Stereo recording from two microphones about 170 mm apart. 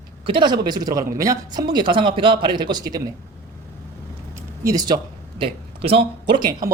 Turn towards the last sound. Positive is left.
turn(degrees=-30)  # may be behind; listen again after turning